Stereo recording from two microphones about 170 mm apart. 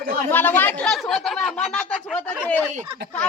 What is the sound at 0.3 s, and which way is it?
A woman's voice, 10° left (ahead or behind).